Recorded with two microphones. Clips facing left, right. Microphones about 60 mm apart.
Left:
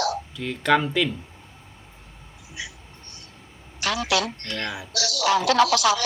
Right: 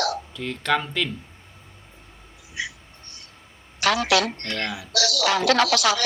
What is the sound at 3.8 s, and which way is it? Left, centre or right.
A woman's voice, right.